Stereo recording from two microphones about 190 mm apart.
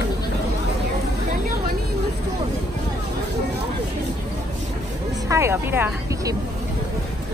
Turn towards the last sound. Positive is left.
turn(degrees=-10)  # may be behind; listen again after turning